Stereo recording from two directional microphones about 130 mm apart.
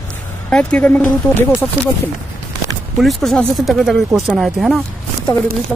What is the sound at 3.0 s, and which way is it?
Speech, centre (ahead or behind).